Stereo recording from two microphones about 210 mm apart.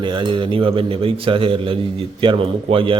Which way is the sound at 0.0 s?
20° right (ahead or behind).